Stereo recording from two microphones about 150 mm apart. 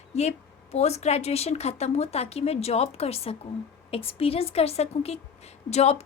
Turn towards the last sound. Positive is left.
turn(degrees=45)  # may be behind; listen again after turning